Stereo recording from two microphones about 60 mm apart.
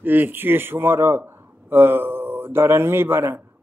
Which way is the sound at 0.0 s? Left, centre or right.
Right.